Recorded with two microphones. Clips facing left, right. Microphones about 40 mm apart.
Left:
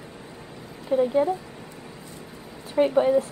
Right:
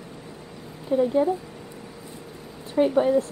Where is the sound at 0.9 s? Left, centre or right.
Centre.